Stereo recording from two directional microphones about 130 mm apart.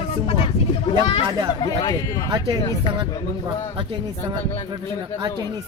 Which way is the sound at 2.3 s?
30° right (ahead or behind).